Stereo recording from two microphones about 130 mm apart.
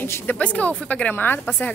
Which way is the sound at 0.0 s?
15° left (ahead or behind).